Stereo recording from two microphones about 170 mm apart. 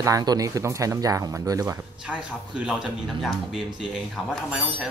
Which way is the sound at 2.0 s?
5° right (ahead or behind).